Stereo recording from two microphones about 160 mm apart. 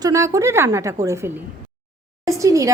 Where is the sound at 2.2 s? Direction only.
20° right (ahead or behind).